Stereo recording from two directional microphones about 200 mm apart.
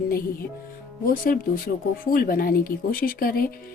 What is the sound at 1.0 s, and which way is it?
Speech, 45° left (ahead or behind).